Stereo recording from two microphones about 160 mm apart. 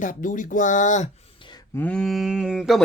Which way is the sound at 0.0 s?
55° left (ahead or behind).